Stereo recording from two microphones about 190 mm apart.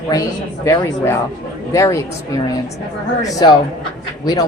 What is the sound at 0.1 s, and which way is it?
A woman's voice, 15° left (ahead or behind).